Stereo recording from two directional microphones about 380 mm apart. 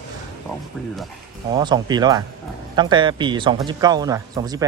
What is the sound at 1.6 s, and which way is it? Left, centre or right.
A man's voice, centre.